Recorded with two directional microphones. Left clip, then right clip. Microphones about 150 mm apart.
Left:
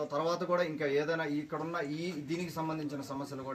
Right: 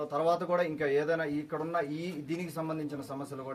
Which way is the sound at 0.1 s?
15° right (ahead or behind).